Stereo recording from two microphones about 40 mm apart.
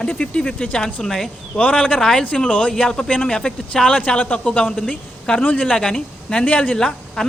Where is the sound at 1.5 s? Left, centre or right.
Left.